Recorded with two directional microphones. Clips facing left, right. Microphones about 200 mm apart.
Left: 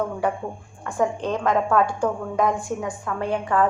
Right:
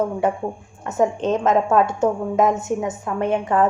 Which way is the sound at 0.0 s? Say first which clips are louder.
Right 4 dB; 20° right (ahead or behind).